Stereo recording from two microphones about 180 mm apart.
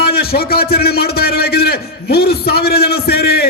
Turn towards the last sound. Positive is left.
turn(degrees=60)  # may be behind; listen again after turning